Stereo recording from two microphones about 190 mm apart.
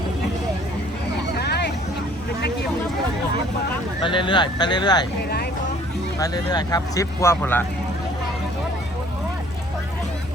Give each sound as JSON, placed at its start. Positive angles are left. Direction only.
{"t": 1.4, "sound": "vehicle", "side_deg": 60}
{"t": 4.0, "sound": "speech", "side_deg": 25}
{"t": 6.1, "sound": "speech", "side_deg": 20}